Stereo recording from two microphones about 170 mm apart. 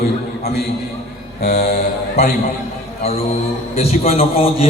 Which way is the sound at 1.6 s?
70° left (ahead or behind).